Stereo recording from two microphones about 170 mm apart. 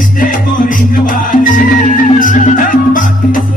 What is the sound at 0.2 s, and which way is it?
Music, 50° left (ahead or behind).